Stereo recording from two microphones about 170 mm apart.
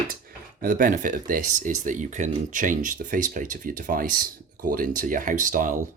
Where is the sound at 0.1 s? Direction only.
55° right (ahead or behind).